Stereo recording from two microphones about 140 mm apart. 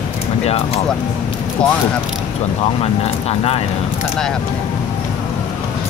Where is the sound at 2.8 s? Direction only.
45° left (ahead or behind).